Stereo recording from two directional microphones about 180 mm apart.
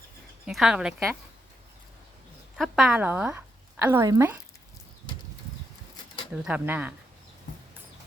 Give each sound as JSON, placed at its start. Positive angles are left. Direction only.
{"t": 0.4, "sound": "speech", "side_deg": -5}
{"t": 2.6, "sound": "a woman's voice", "side_deg": 0}
{"t": 6.3, "sound": "speech", "side_deg": -5}